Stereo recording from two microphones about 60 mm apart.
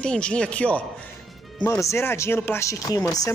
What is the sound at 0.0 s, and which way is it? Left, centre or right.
Speech, centre.